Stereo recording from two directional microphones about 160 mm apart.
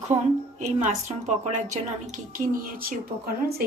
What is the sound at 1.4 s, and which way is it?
Speech, 45° right (ahead or behind).